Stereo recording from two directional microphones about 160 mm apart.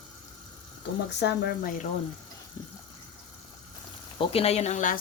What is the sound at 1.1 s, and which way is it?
Speech, 90° left.